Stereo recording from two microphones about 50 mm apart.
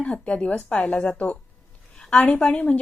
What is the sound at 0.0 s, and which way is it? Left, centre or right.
Speech, centre.